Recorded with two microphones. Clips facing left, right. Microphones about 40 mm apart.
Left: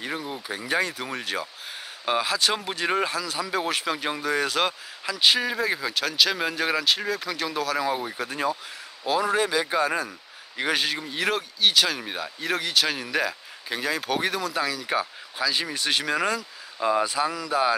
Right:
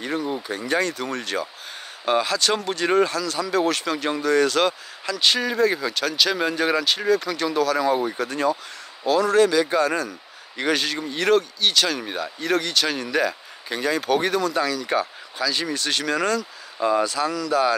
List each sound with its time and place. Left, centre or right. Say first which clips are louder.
0.0 s speech: right 5 dB; centre